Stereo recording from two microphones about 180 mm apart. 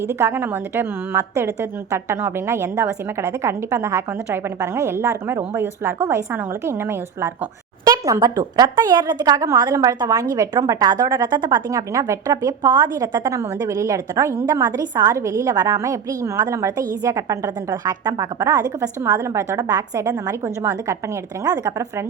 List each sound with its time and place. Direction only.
0.1 s a woman's voice: 15° right (ahead or behind)
7.9 s speech: 20° right (ahead or behind)